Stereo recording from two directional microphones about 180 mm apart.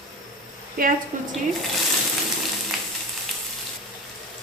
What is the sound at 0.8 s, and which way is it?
Speech, 55° right (ahead or behind).